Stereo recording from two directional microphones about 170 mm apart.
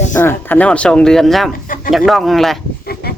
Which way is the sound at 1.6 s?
55° left (ahead or behind).